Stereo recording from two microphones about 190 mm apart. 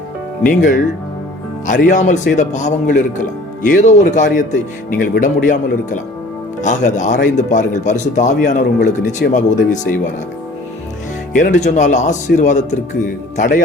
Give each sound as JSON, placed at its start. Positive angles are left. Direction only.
{"t": 0.4, "sound": "speech", "side_deg": 45}
{"t": 11.3, "sound": "speech", "side_deg": 40}